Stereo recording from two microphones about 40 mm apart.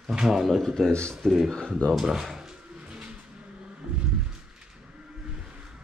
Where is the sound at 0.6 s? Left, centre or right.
Centre.